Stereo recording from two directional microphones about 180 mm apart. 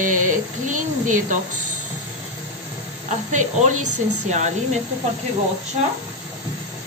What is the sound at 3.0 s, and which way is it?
A woman's voice, 40° right (ahead or behind).